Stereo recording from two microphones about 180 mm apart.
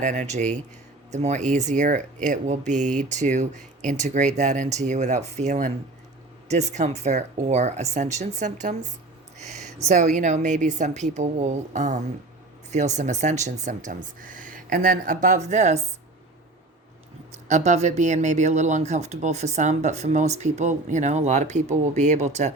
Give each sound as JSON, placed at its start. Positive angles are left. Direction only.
{"t": 0.0, "sound": "a woman's voice", "side_deg": -40}
{"t": 17.5, "sound": "speech", "side_deg": -40}